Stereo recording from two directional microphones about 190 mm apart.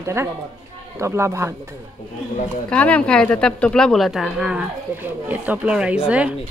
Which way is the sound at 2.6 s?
5° left (ahead or behind).